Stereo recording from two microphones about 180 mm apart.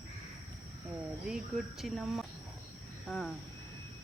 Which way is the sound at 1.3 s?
5° right (ahead or behind).